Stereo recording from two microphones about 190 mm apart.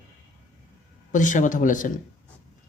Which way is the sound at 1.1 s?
40° left (ahead or behind).